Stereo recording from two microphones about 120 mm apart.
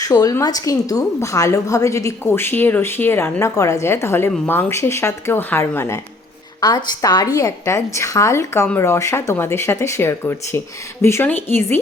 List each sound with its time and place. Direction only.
0.0 s a woman's voice: 30° left (ahead or behind)
6.6 s a woman's voice: 35° left (ahead or behind); by 11.8 s 15° left (ahead or behind)